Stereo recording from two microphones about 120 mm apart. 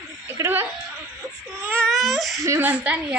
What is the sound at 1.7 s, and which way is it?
Baby cry, 10° left (ahead or behind).